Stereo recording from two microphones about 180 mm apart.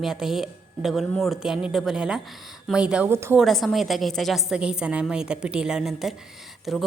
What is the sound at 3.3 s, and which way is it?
A woman's voice, centre (ahead or behind).